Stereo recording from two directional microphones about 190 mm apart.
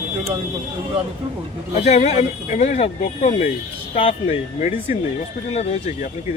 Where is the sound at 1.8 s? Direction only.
35° left (ahead or behind).